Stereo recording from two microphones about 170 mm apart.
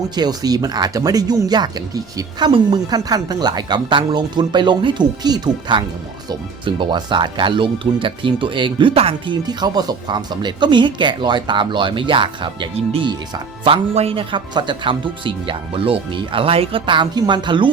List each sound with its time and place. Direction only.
0.2 s speech: 20° right (ahead or behind)